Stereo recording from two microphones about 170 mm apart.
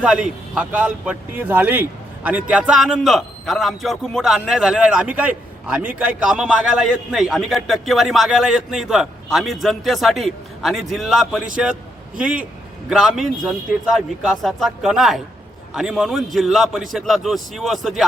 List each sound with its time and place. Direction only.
0.0 s a man's voice: 5° right (ahead or behind)